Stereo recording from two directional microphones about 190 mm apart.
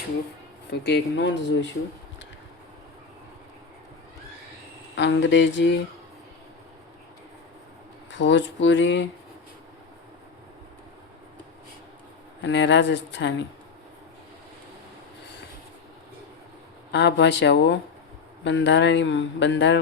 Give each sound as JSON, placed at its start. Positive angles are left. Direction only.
{"t": 0.7, "sound": "speech", "side_deg": 65}
{"t": 4.9, "sound": "speech", "side_deg": 70}
{"t": 8.1, "sound": "speech", "side_deg": 70}
{"t": 12.4, "sound": "speech", "side_deg": 70}
{"t": 16.9, "sound": "speech", "side_deg": 65}